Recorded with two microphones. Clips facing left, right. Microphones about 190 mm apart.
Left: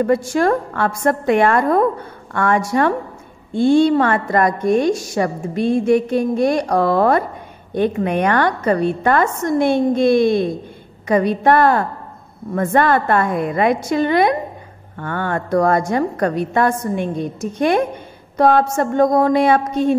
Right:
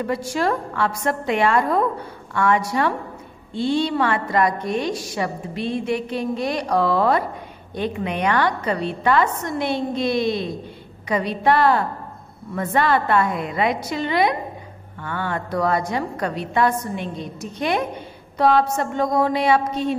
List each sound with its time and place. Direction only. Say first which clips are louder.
0.0 s a woman's voice: left 7 dB; 50° left (ahead or behind)